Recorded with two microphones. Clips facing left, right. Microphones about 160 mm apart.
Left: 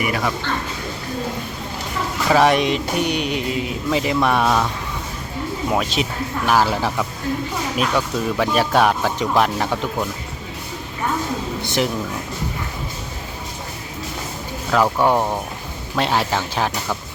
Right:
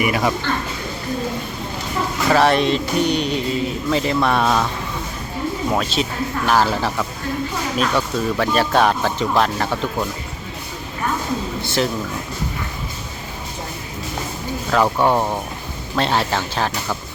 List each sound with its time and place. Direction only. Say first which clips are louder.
0.0 s speech: right 3 dB; 15° right (ahead or behind)
2.3 s speech: even; 10° left (ahead or behind)
5.7 s speech: even; 15° left (ahead or behind)
11.6 s speech: even; 15° left (ahead or behind)
14.7 s speech: even; 10° left (ahead or behind)